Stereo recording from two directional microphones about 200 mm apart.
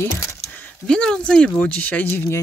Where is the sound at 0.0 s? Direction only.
15° left (ahead or behind).